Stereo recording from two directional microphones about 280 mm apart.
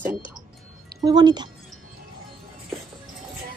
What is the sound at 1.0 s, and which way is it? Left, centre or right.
Speech, centre.